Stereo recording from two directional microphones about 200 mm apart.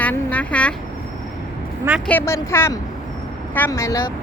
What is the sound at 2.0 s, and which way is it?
Speech, 10° left (ahead or behind).